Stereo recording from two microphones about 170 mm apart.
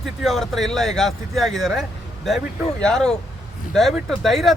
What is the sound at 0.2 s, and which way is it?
Speech, centre (ahead or behind).